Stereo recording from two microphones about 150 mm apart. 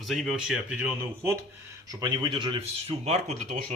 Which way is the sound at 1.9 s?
25° right (ahead or behind).